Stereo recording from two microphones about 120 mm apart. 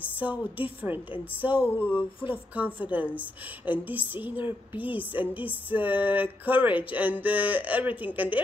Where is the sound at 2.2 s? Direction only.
15° right (ahead or behind).